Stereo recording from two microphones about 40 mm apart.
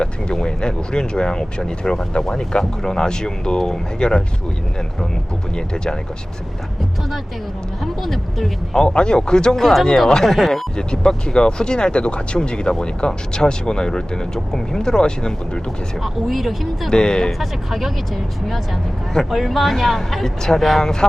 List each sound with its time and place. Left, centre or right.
0.0 s speech: left
5.5 s speech: centre
7.8 s speech: centre
8.7 s speech: left; by 10.6 s centre
10.8 s speech: centre
16.0 s speech: centre
16.9 s speech: centre
17.4 s speech: centre